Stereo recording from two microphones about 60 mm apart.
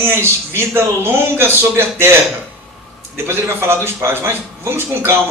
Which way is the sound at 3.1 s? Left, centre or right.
Right.